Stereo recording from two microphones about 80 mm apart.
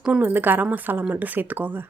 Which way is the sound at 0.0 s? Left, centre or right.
Centre.